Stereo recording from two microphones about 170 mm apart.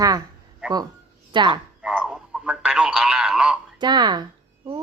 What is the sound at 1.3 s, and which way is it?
Speech, 25° right (ahead or behind).